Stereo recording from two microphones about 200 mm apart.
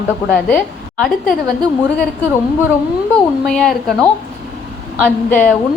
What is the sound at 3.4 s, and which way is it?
Speech, centre (ahead or behind).